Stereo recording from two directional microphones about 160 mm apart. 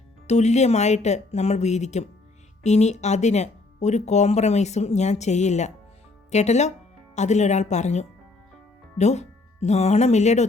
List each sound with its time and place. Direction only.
0.3 s speech: 45° left (ahead or behind)